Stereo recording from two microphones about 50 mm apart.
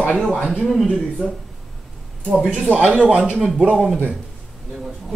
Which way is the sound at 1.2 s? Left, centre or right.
Centre.